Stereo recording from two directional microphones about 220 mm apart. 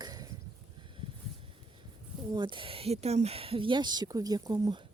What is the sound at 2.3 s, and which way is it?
Speech, 20° right (ahead or behind).